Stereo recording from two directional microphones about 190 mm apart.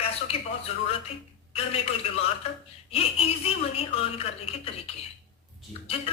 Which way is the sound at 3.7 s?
30° left (ahead or behind).